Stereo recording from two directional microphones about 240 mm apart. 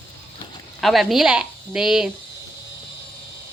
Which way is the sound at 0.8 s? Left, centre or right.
Centre.